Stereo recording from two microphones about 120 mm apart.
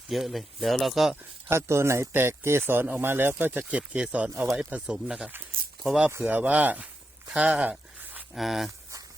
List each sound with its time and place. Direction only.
0.1 s speech: centre (ahead or behind)
1.1 s speech: 20° right (ahead or behind); by 6.1 s centre (ahead or behind)
6.1 s speech: 15° right (ahead or behind)
7.3 s a sound: 10° right (ahead or behind)
8.3 s speech: centre (ahead or behind)